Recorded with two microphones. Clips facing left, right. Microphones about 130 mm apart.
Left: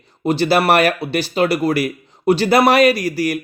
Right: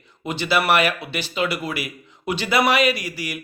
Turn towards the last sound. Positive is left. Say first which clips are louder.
# left 8 dB
turn(degrees=40)  # may be behind; listen again after turning